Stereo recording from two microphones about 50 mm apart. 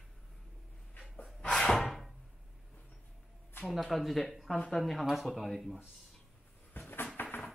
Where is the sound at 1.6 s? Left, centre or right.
Centre.